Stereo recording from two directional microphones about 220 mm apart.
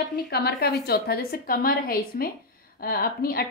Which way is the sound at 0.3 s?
45° left (ahead or behind).